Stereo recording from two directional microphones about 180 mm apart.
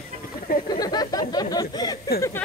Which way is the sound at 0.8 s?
20° left (ahead or behind).